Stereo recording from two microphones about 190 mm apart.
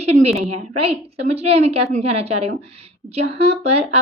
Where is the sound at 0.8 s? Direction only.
30° right (ahead or behind).